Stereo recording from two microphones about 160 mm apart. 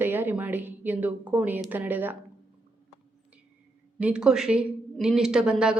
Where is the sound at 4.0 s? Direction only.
5° right (ahead or behind).